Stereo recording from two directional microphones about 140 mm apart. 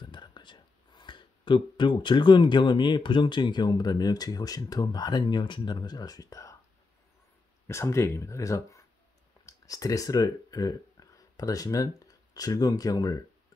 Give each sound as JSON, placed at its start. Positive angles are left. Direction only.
{"t": 0.0, "sound": "speech", "side_deg": 35}
{"t": 7.6, "sound": "speech", "side_deg": 20}